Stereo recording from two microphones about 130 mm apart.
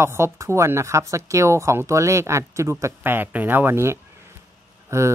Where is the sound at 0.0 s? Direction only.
20° right (ahead or behind).